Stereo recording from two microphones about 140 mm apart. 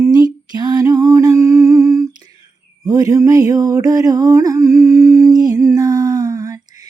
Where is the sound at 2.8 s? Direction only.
25° right (ahead or behind).